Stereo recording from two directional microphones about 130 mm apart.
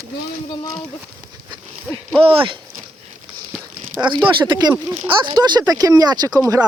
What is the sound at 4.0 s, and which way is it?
Speech, 40° right (ahead or behind).